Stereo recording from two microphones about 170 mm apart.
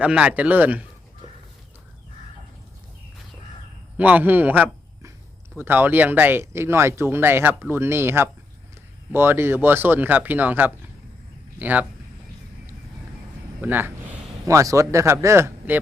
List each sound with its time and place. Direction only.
0.0 s speech: 5° right (ahead or behind)
3.9 s speech: 10° right (ahead or behind)
13.6 s speech: 10° right (ahead or behind)